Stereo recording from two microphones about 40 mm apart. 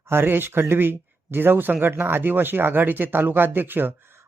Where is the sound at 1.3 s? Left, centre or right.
Right.